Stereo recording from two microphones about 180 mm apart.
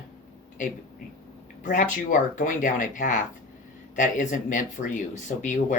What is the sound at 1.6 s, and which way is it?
Speech, 45° left (ahead or behind).